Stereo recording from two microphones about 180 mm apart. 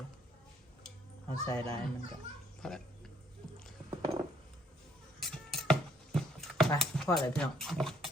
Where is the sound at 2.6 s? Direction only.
5° left (ahead or behind).